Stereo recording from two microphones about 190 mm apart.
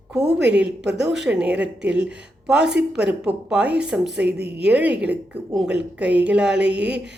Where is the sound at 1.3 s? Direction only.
5° right (ahead or behind).